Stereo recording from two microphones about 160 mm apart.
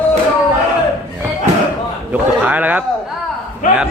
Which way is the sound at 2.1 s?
10° right (ahead or behind).